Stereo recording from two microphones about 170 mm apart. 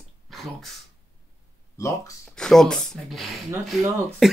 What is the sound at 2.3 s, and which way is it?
Speech, 5° left (ahead or behind).